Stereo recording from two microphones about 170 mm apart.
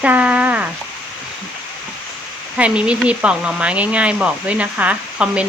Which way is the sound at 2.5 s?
5° right (ahead or behind).